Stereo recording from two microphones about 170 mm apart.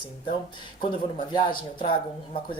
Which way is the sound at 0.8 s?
30° left (ahead or behind).